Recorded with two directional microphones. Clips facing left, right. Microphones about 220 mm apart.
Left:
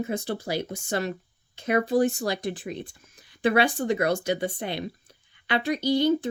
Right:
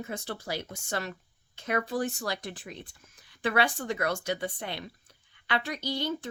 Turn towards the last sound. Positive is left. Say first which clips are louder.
# left 10 dB
turn(degrees=15)  # may be behind; listen again after turning